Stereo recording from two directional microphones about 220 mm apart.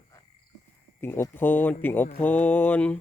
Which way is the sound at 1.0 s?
10° left (ahead or behind).